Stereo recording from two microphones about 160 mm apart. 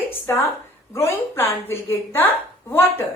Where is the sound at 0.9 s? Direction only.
15° left (ahead or behind).